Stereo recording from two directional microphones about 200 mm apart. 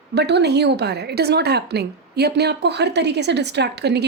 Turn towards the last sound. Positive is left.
turn(degrees=-55)  # may be behind; listen again after turning